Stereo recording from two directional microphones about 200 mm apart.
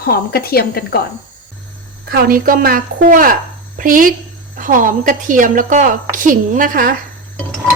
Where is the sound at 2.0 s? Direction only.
50° right (ahead or behind).